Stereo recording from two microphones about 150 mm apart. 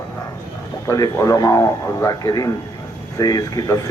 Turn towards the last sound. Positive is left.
turn(degrees=25)  # may be behind; listen again after turning